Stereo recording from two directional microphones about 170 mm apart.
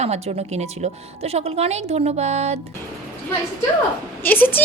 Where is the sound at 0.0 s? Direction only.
40° right (ahead or behind).